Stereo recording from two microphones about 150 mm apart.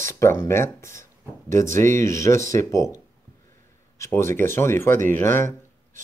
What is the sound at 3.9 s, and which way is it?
Speech, 20° left (ahead or behind).